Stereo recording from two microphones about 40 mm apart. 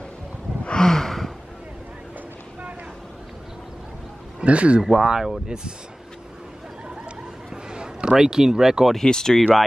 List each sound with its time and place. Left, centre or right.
0.7 s gasp: centre
4.4 s speech: right
4.9 s speech: centre
7.7 s a man's voice: right
8.9 s speech: centre